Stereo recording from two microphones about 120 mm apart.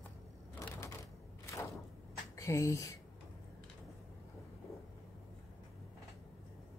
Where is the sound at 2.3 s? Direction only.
25° left (ahead or behind).